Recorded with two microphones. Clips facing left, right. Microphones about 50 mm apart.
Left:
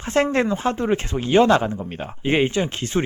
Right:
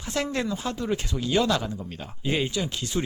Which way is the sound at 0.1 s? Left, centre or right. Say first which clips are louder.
Left 8 dB; left.